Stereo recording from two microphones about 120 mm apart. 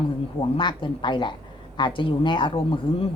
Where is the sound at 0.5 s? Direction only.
40° left (ahead or behind).